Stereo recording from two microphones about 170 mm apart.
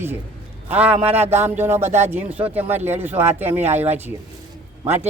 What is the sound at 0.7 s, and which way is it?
Speech, 10° right (ahead or behind).